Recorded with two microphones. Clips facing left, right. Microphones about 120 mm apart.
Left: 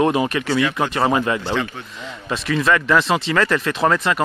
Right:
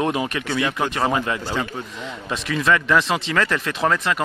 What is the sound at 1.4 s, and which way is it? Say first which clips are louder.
Speech: left 3 dB; 10° right (ahead or behind).